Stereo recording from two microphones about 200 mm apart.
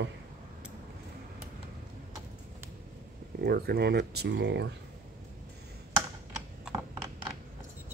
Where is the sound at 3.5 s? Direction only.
50° right (ahead or behind).